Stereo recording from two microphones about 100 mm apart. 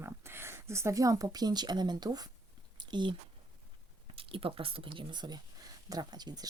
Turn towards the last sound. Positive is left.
turn(degrees=-40)  # may be behind; listen again after turning